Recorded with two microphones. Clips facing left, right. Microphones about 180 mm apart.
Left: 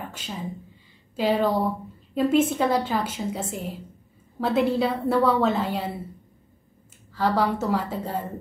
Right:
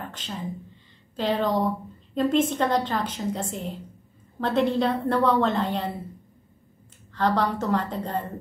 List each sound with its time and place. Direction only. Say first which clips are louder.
0.1 s a woman's voice: even; 10° left (ahead or behind)
7.2 s a woman's voice: left 1 dB; 5° left (ahead or behind)